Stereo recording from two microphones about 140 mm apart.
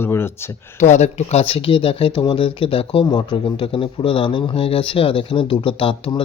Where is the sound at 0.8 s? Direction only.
55° left (ahead or behind).